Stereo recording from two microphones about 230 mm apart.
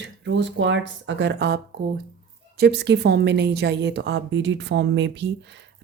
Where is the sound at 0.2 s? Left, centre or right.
Right.